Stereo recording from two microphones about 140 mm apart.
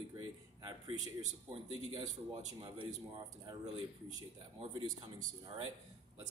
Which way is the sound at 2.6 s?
30° right (ahead or behind).